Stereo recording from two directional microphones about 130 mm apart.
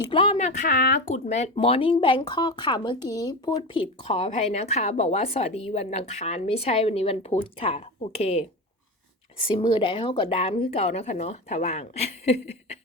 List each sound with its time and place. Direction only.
0.1 s a woman's voice: 45° left (ahead or behind)
0.3 s speech: 70° left (ahead or behind)
1.5 s speech: 45° left (ahead or behind); by 3.6 s 30° left (ahead or behind)
3.8 s a woman's voice: 50° left (ahead or behind)